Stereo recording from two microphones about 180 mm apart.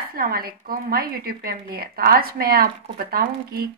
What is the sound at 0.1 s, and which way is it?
A woman's voice, 55° right (ahead or behind).